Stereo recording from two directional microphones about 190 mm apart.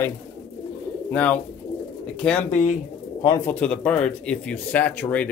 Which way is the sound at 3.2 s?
15° left (ahead or behind).